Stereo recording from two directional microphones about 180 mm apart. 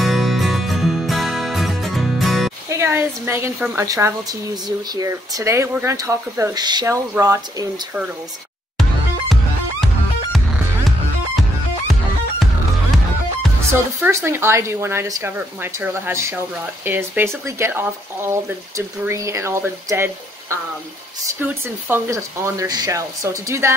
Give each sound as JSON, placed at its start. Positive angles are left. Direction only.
{"t": 0.0, "sound": "music", "side_deg": 0}
{"t": 2.7, "sound": "a woman's voice", "side_deg": -15}
{"t": 14.0, "sound": "a woman's voice", "side_deg": -15}